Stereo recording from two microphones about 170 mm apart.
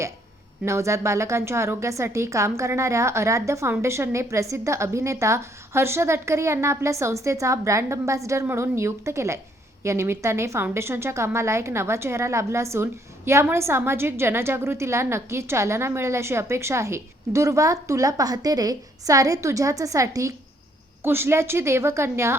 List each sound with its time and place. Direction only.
0.6 s a woman's voice: 15° right (ahead or behind)